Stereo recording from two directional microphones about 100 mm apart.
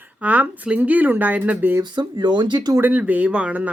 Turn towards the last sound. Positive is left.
turn(degrees=-15)  # may be behind; listen again after turning